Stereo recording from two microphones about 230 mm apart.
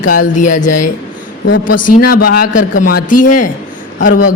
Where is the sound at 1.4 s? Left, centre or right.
Left.